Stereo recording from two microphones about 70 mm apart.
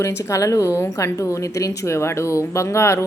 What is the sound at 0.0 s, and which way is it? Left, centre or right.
A woman's voice, left.